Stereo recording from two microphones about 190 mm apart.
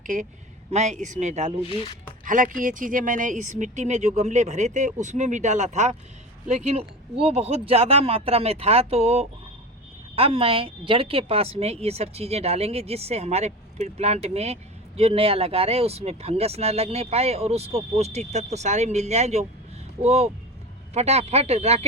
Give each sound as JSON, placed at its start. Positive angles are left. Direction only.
{"t": 0.7, "sound": "a woman's voice", "side_deg": -35}
{"t": 1.7, "sound": "speech", "side_deg": 25}
{"t": 2.2, "sound": "a woman's voice", "side_deg": -45}